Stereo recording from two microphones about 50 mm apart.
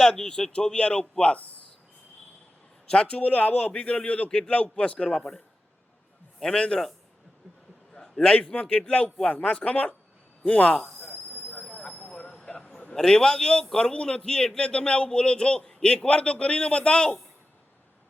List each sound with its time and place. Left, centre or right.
0.0 s speech: centre
2.9 s a man's voice: left
5.1 s speech: centre
6.4 s speech: centre
8.0 s a man's voice: centre
10.8 s a sound: centre
11.7 s train: left
12.4 s a sound: centre
12.6 s a sound: left
12.9 s a man's voice: centre